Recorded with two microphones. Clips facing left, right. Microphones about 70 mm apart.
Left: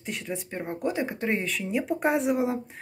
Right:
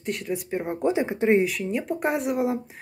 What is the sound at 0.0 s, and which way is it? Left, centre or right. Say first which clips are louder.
Speech: right 5 dB; centre.